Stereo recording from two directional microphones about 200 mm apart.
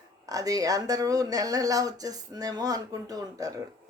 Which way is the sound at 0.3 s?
15° right (ahead or behind).